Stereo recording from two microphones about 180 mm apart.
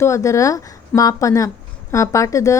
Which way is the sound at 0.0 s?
15° left (ahead or behind).